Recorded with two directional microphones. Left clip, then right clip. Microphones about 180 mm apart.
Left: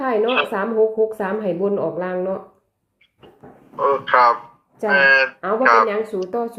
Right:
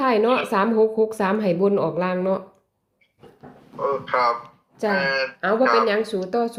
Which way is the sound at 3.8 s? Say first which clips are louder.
Left 6 dB; 5° left (ahead or behind).